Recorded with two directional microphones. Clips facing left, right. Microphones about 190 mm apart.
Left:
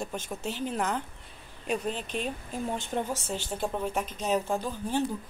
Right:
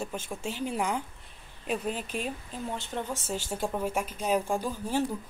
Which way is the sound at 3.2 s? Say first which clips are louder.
Even; 10° right (ahead or behind).